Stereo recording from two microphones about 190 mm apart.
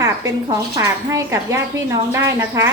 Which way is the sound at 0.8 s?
15° right (ahead or behind).